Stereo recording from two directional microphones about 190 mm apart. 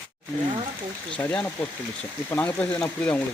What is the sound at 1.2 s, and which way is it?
Speech, 5° left (ahead or behind).